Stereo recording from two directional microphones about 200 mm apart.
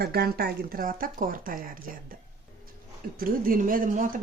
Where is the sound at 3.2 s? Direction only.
45° right (ahead or behind).